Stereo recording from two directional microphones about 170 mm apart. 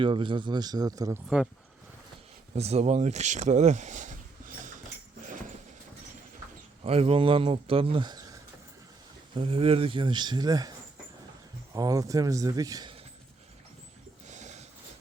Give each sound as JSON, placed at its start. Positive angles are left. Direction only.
{"t": 0.0, "sound": "speech", "side_deg": -30}
{"t": 2.6, "sound": "speech", "side_deg": -40}
{"t": 6.8, "sound": "a man's voice", "side_deg": -35}
{"t": 9.3, "sound": "speech", "side_deg": -30}
{"t": 11.7, "sound": "speech", "side_deg": -20}
{"t": 14.3, "sound": "a sound", "side_deg": -45}